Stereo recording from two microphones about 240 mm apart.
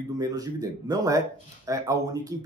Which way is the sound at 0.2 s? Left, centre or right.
Centre.